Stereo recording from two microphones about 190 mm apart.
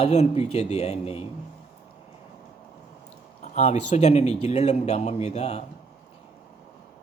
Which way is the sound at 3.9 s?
35° left (ahead or behind).